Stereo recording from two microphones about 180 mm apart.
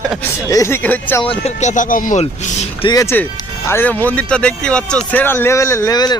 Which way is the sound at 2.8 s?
20° left (ahead or behind).